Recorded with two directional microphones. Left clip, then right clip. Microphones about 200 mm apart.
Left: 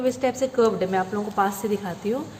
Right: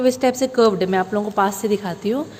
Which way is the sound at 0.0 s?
45° right (ahead or behind).